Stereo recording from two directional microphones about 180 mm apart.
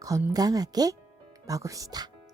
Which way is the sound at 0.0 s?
20° right (ahead or behind).